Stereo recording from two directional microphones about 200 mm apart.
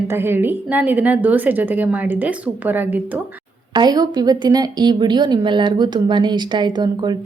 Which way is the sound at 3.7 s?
20° right (ahead or behind).